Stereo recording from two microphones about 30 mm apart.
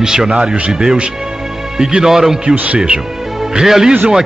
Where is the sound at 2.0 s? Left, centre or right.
Centre.